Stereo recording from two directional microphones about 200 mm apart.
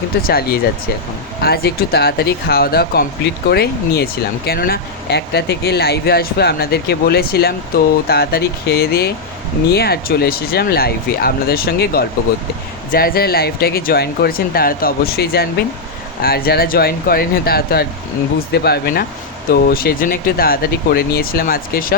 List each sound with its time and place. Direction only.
0.2 s speech: 50° left (ahead or behind)